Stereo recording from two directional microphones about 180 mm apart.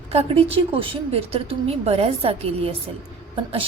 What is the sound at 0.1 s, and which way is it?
A woman's voice, 35° right (ahead or behind).